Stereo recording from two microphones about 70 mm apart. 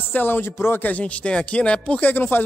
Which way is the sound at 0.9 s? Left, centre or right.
Left.